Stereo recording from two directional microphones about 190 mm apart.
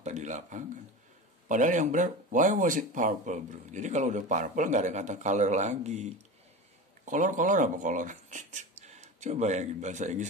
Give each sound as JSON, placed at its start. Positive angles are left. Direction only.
{"t": 0.0, "sound": "speech", "side_deg": -40}